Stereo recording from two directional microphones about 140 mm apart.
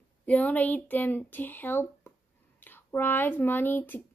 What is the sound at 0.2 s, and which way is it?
A woman's voice, 10° left (ahead or behind).